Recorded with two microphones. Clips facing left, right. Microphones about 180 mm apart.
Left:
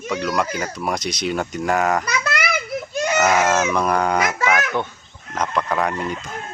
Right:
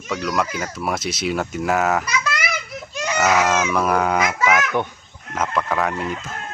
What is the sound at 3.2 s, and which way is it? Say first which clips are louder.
Speech: even; centre (ahead or behind).